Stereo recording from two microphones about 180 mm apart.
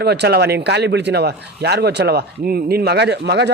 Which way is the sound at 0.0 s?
65° right (ahead or behind).